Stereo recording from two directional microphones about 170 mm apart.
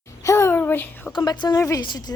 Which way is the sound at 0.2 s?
15° left (ahead or behind).